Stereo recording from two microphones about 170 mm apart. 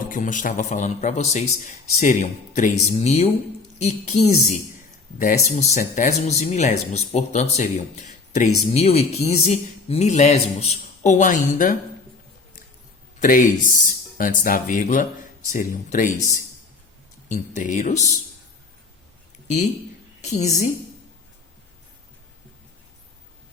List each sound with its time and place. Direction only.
0.1 s speech: 50° left (ahead or behind)
13.1 s speech: 55° left (ahead or behind)
17.2 s speech: 50° left (ahead or behind)
20.2 s speech: 40° left (ahead or behind)